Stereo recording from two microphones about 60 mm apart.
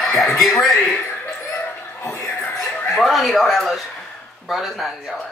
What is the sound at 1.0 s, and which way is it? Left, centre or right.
Chuckle, left.